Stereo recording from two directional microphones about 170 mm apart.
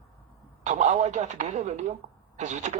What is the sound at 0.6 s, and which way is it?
Speech, 45° right (ahead or behind).